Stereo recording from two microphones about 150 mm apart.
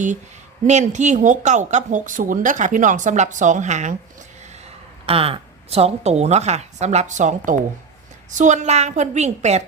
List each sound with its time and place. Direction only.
0.7 s a woman's voice: 50° right (ahead or behind)
5.0 s a woman's voice: 40° right (ahead or behind)